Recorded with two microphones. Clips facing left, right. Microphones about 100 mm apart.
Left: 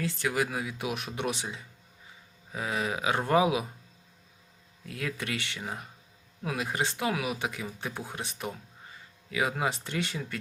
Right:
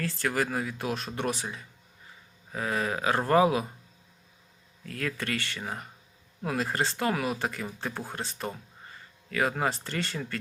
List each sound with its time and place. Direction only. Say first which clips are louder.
0.0 s speech: even; 15° left (ahead or behind)
4.9 s speech: right 2 dB; 10° left (ahead or behind)